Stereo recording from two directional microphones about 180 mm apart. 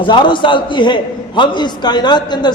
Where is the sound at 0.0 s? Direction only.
25° left (ahead or behind).